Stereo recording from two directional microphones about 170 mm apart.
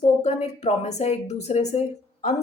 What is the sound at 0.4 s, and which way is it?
Speech, 40° left (ahead or behind).